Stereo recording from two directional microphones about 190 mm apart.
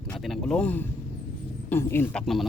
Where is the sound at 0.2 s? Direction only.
Centre (ahead or behind).